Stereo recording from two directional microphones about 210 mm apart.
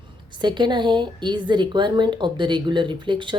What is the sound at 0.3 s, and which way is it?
A woman's voice, 20° right (ahead or behind).